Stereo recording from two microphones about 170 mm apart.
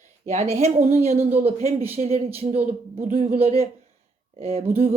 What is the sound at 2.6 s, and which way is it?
Speech, 50° right (ahead or behind).